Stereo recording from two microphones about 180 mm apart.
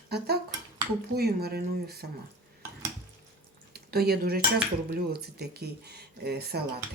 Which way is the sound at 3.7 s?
60° right (ahead or behind).